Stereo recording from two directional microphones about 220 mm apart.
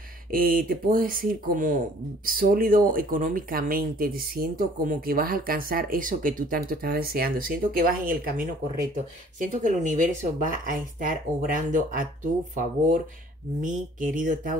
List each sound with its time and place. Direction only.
0.3 s speech: 40° right (ahead or behind)